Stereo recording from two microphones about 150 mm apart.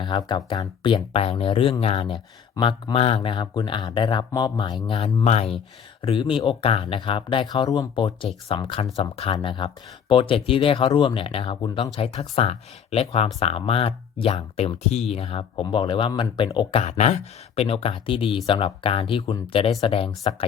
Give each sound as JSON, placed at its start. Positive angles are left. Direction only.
{"t": 0.0, "sound": "speech", "side_deg": 30}
{"t": 4.9, "sound": "speech", "side_deg": 45}
{"t": 6.0, "sound": "speech", "side_deg": 35}
{"t": 16.7, "sound": "speech", "side_deg": 50}